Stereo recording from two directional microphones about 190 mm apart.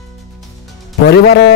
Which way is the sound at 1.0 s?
55° left (ahead or behind).